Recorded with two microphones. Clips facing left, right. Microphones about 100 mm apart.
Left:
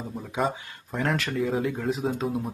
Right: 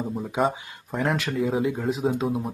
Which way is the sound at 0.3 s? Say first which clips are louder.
Right 2 dB; centre (ahead or behind).